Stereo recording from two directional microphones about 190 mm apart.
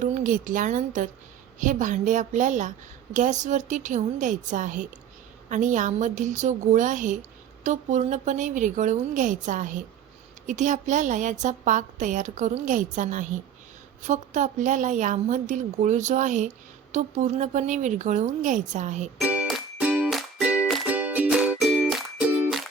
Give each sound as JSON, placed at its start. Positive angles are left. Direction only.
{"t": 0.0, "sound": "a woman's voice", "side_deg": -40}
{"t": 19.2, "sound": "music", "side_deg": -5}